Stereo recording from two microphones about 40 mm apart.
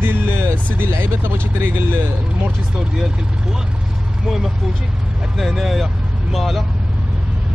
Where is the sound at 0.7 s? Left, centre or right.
Right.